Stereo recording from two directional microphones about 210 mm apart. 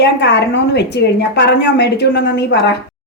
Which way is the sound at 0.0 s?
55° left (ahead or behind).